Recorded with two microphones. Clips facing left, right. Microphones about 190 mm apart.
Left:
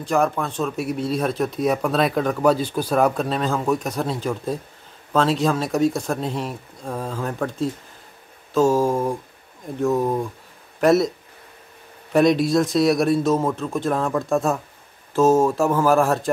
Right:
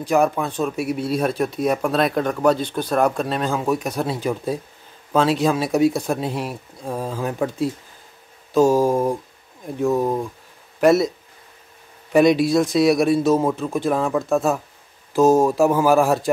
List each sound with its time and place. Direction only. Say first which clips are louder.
0.0 s speech: right 2 dB; 5° right (ahead or behind)
9.8 s speech: right 1 dB; 5° right (ahead or behind)
12.1 s speech: right 2 dB; 5° right (ahead or behind)